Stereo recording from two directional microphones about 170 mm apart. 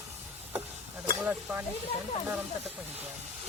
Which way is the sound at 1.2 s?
10° right (ahead or behind).